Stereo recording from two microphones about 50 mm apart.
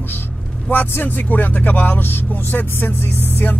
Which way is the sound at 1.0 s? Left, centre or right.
Left.